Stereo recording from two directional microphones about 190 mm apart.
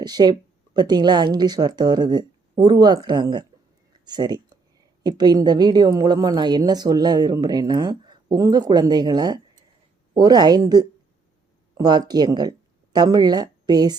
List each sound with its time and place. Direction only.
0.0 s a woman's voice: 20° right (ahead or behind)